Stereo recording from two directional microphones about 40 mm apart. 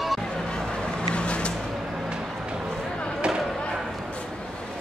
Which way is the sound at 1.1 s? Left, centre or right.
Left.